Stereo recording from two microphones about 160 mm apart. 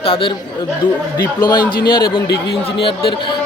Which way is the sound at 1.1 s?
25° left (ahead or behind).